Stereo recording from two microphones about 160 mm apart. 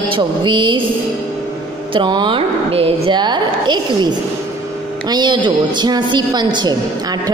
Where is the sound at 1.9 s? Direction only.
30° right (ahead or behind).